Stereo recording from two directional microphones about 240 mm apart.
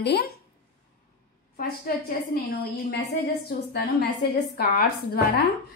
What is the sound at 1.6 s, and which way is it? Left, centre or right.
Speech, left.